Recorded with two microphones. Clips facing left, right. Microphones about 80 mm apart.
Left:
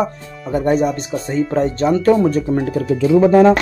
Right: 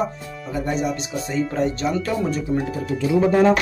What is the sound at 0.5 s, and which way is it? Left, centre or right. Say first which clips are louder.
Speech: left 9 dB; left.